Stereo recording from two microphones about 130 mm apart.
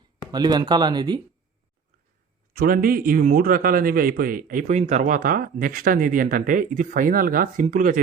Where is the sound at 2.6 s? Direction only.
90° right.